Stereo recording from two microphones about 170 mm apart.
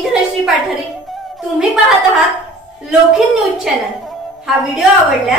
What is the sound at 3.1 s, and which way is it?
A woman's voice, centre (ahead or behind).